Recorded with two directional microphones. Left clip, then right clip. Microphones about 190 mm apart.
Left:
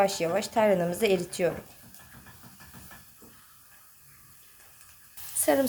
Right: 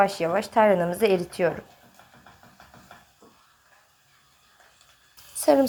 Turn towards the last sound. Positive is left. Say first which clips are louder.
# right 5 dB
turn(degrees=-15)  # may be behind; listen again after turning